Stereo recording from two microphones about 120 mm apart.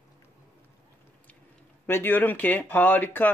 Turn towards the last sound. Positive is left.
turn(degrees=15)  # may be behind; listen again after turning